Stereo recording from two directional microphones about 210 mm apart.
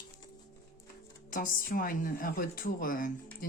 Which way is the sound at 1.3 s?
40° left (ahead or behind).